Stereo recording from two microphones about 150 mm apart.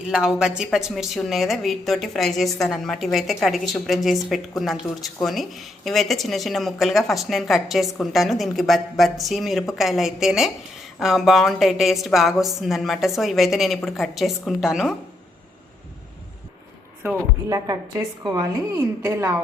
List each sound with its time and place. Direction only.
0.1 s speech: 5° right (ahead or behind)
17.5 s a woman's voice: 25° right (ahead or behind)